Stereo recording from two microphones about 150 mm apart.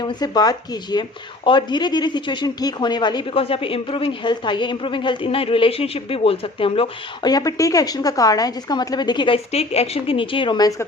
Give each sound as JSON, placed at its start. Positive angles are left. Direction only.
{"t": 0.0, "sound": "speech", "side_deg": 30}